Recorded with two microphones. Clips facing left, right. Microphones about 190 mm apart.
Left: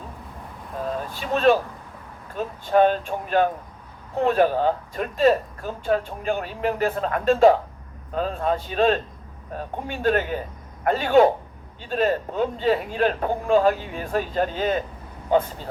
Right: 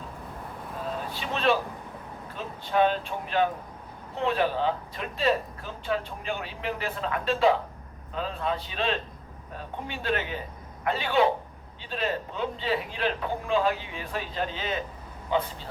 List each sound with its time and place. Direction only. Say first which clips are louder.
1.1 s speech: left 7 dB; 45° left (ahead or behind)